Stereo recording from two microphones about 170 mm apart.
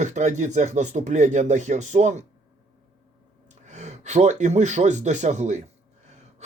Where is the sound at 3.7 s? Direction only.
40° right (ahead or behind).